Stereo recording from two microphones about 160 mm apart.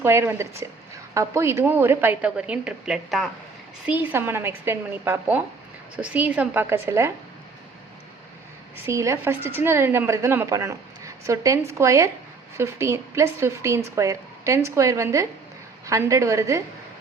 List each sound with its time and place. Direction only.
0.0 s a woman's voice: 15° right (ahead or behind)
8.9 s a woman's voice: 15° right (ahead or behind)